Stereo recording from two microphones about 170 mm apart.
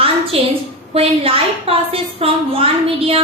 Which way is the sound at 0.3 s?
35° right (ahead or behind).